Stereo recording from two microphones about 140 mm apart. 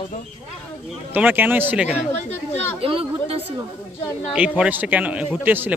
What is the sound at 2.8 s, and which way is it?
Speech, 40° right (ahead or behind).